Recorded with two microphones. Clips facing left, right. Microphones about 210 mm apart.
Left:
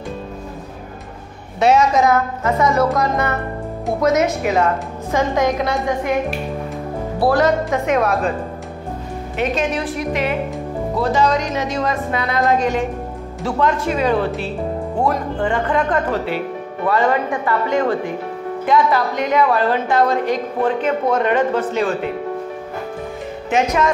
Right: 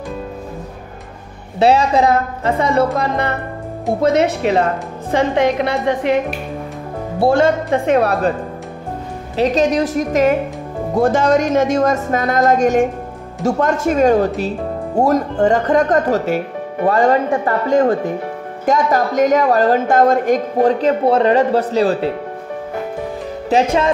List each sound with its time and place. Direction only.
1.6 s a woman's voice: 30° right (ahead or behind)
5.6 s a woman's voice: 70° right (ahead or behind)
7.2 s a woman's voice: 25° right (ahead or behind)
9.4 s a woman's voice: 40° right (ahead or behind)
23.5 s a woman's voice: 30° right (ahead or behind)